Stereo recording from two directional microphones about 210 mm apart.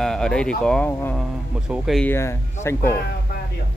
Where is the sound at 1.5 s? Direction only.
5° right (ahead or behind); by 2.9 s 10° left (ahead or behind).